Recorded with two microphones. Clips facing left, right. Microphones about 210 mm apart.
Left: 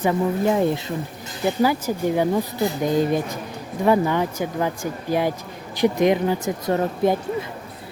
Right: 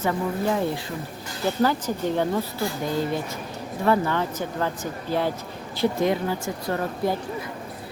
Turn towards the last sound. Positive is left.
turn(degrees=20)  # may be behind; listen again after turning